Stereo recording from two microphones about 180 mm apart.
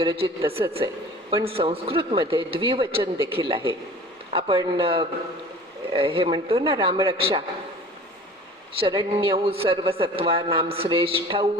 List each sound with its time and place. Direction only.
0.0 s a man's voice: 30° right (ahead or behind)
8.8 s a man's voice: 30° right (ahead or behind)